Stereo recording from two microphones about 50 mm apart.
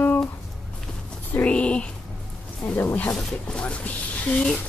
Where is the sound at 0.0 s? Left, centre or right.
Left.